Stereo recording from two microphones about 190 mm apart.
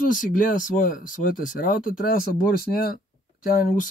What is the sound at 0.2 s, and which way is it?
Speech, 45° left (ahead or behind).